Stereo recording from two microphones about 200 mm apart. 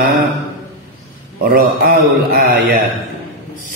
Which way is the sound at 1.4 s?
45° right (ahead or behind).